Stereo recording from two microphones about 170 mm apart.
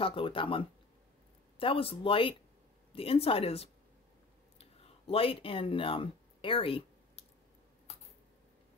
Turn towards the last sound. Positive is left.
turn(degrees=30)  # may be behind; listen again after turning